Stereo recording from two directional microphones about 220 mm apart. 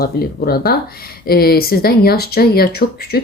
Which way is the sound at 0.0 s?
45° left (ahead or behind).